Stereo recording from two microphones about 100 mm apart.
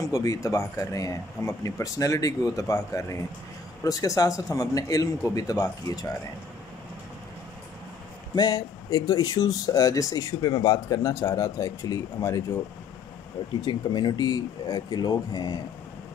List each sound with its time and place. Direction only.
0.0 s speech: 35° left (ahead or behind)
8.4 s speech: 40° left (ahead or behind)
13.6 s speech: 45° left (ahead or behind)